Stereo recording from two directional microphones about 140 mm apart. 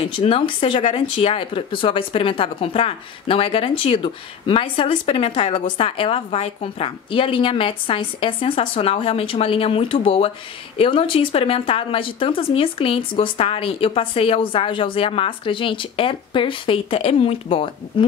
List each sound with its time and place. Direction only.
0.0 s speech: 40° left (ahead or behind)